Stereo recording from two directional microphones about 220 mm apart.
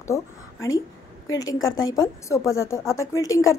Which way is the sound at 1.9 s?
15° left (ahead or behind).